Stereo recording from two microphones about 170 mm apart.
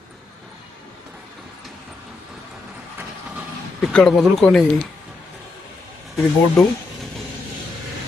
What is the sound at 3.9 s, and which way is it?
Speech, 5° left (ahead or behind).